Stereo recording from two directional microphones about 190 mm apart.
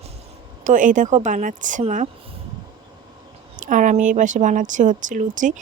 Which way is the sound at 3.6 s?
40° right (ahead or behind).